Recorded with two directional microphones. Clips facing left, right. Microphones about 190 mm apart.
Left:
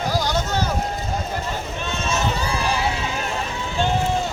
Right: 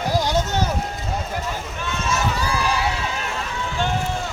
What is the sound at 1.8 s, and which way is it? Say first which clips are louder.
Run: right 1 dB; 25° left (ahead or behind).